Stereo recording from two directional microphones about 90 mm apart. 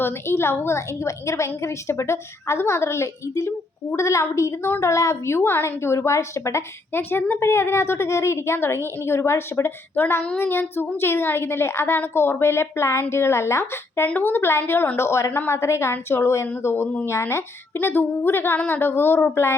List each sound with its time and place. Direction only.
0.0 s a woman's voice: 25° left (ahead or behind)